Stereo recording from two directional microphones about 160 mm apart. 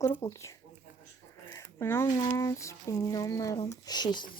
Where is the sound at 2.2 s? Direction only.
20° left (ahead or behind).